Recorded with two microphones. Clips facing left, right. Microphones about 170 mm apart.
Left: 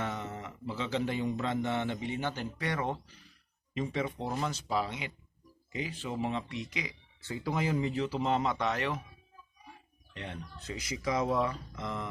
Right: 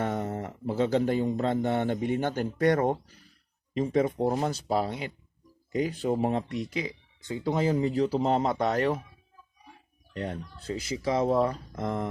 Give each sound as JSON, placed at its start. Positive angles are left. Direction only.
{"t": 0.0, "sound": "speech", "side_deg": -45}
{"t": 7.2, "sound": "speech", "side_deg": -20}
{"t": 10.1, "sound": "speech", "side_deg": -40}